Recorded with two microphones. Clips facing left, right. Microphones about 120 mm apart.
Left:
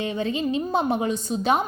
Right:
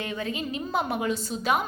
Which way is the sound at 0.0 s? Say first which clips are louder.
Left 6 dB; 25° left (ahead or behind).